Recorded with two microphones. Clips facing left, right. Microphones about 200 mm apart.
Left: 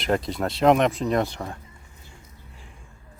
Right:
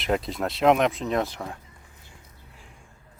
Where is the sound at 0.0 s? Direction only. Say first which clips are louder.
Left 2 dB; centre (ahead or behind).